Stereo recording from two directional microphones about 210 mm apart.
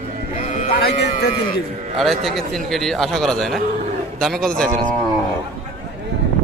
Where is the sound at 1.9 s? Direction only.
Centre (ahead or behind).